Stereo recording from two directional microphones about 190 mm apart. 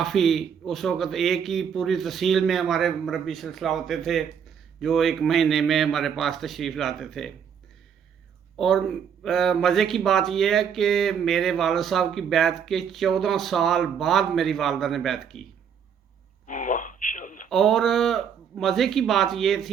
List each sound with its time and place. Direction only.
0.0 s speech: centre (ahead or behind)
8.5 s speech: centre (ahead or behind)
16.5 s speech: 45° left (ahead or behind)
17.5 s speech: centre (ahead or behind)